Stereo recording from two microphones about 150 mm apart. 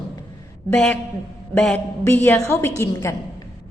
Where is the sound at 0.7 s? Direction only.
10° left (ahead or behind).